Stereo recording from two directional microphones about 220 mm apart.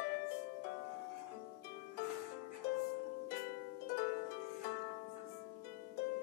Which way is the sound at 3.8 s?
50° left (ahead or behind).